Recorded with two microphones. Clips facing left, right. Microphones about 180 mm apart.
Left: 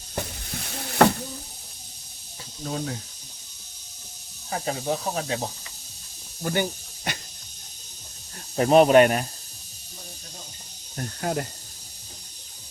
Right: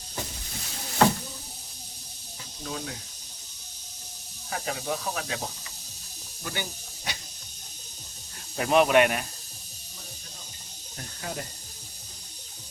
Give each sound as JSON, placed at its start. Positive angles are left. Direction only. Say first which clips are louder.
{"t": 1.0, "sound": "a sound", "louder": "left 3 dB", "side_deg": 65}
{"t": 2.6, "sound": "speech", "louder": "left 5 dB", "side_deg": 35}
{"t": 4.5, "sound": "speech", "louder": "left 4 dB", "side_deg": 30}
{"t": 6.4, "sound": "speech", "louder": "left 10 dB", "side_deg": 45}
{"t": 8.5, "sound": "speech", "louder": "left 5 dB", "side_deg": 35}
{"t": 10.9, "sound": "speech", "louder": "left 9 dB", "side_deg": 50}